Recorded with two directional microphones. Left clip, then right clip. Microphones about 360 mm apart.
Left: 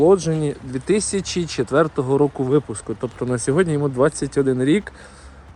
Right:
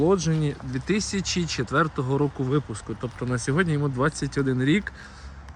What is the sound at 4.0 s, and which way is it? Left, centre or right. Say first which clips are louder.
Speech: left 8 dB; centre.